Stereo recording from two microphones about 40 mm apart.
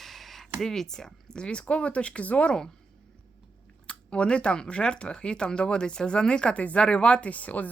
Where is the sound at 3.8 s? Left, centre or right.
Left.